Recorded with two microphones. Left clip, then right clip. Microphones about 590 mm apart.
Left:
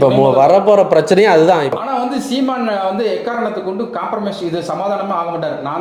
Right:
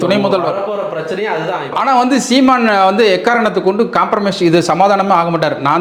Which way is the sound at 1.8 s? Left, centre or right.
Right.